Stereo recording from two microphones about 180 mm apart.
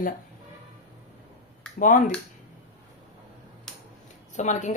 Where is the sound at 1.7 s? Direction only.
45° left (ahead or behind).